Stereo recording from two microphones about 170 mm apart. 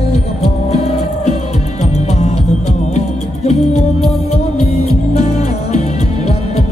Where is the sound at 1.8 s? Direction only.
40° left (ahead or behind).